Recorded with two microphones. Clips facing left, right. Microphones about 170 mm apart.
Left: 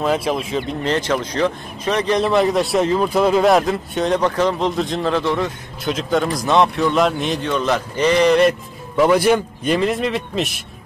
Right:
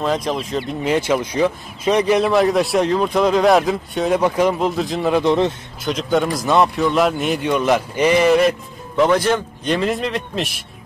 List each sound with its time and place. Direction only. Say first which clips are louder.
0.0 s speech: left 1 dB; 5° left (ahead or behind)
5.1 s a man's voice: right 6 dB; 20° right (ahead or behind)
5.9 s speech: right 1 dB; centre (ahead or behind)